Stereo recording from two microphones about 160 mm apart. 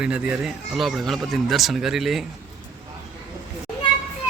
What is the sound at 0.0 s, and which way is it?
Speech, 5° right (ahead or behind).